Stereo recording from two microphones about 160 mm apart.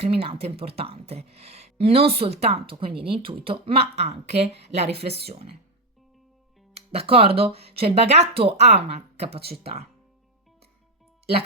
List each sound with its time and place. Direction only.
0.0 s speech: 35° right (ahead or behind)
6.7 s speech: 40° right (ahead or behind)